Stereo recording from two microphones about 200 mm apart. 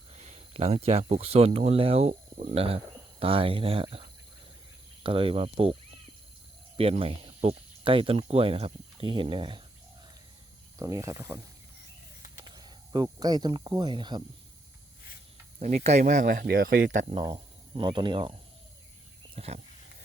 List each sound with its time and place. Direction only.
0.2 s speech: 30° right (ahead or behind)
6.7 s speech: 30° right (ahead or behind)
10.8 s speech: 15° right (ahead or behind)
12.5 s speech: 20° right (ahead or behind)
15.5 s speech: 35° right (ahead or behind)
17.2 s speech: 20° right (ahead or behind)
19.4 s speech: 30° right (ahead or behind)